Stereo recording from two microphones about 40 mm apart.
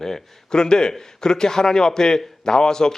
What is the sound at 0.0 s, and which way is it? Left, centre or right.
A man's voice, centre.